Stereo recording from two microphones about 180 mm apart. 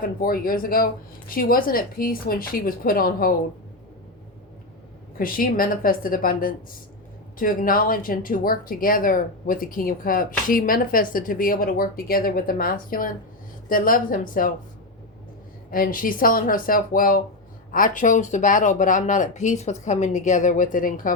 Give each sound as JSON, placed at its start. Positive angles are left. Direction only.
{"t": 0.2, "sound": "speech", "side_deg": 55}
{"t": 5.1, "sound": "speech", "side_deg": 50}
{"t": 15.7, "sound": "speech", "side_deg": 50}